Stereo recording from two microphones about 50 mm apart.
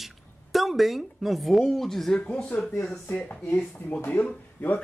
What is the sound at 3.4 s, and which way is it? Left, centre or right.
Speech, left.